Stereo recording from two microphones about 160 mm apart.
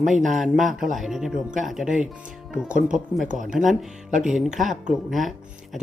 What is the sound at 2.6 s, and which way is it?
Speech, 55° right (ahead or behind).